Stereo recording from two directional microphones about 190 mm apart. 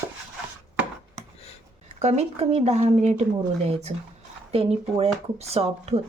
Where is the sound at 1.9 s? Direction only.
35° right (ahead or behind).